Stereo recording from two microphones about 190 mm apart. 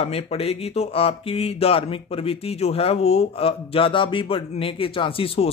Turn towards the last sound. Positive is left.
turn(degrees=30)  # may be behind; listen again after turning